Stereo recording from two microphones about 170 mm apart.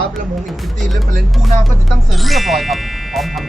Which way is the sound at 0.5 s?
Centre (ahead or behind).